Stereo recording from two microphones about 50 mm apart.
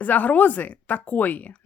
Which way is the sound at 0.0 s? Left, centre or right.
Left.